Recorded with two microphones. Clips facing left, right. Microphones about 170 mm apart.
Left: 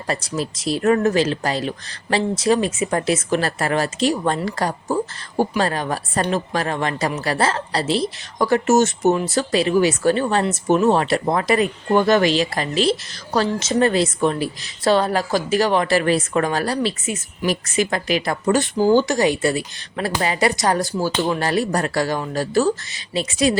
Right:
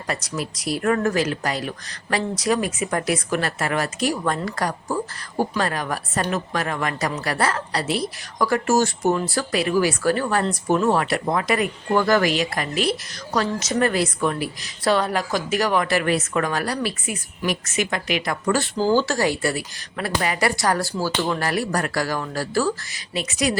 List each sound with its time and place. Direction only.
0.1 s speech: 30° left (ahead or behind)
18.5 s speech: 20° left (ahead or behind)